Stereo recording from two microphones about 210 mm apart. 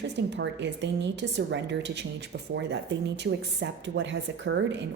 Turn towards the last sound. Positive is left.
turn(degrees=-60)  # may be behind; listen again after turning